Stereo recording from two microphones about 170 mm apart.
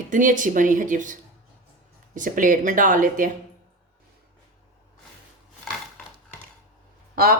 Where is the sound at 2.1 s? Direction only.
50° right (ahead or behind).